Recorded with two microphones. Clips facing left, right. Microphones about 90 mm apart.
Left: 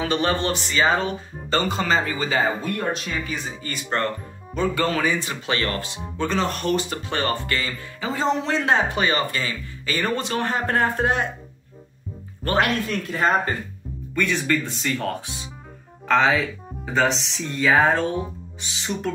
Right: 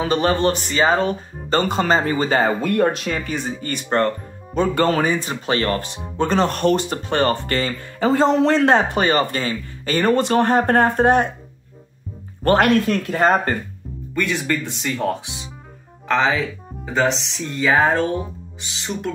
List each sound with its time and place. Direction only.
0.0 s speech: 35° right (ahead or behind)
6.1 s speech: 50° right (ahead or behind)
12.4 s speech: 55° right (ahead or behind)
14.1 s speech: 5° right (ahead or behind)
14.4 s speech: 15° right (ahead or behind)
16.1 s speech: centre (ahead or behind)